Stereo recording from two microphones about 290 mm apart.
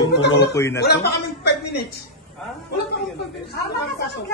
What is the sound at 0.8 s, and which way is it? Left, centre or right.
A woman's voice, left.